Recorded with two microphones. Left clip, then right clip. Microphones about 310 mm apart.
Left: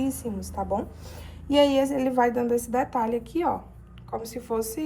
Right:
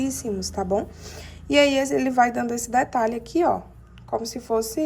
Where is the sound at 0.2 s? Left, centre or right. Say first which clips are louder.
Right 6 dB; right.